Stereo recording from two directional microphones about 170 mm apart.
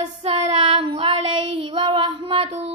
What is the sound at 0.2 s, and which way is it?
Child singing, 35° right (ahead or behind).